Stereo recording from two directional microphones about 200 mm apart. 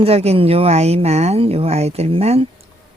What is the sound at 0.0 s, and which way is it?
Speech, 30° right (ahead or behind).